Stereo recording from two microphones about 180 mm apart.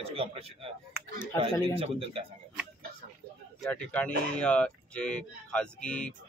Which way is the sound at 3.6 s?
5° left (ahead or behind).